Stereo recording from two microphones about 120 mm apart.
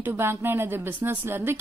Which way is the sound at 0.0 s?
20° right (ahead or behind).